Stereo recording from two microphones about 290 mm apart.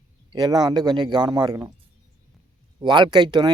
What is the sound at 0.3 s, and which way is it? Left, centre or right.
A man's voice, centre.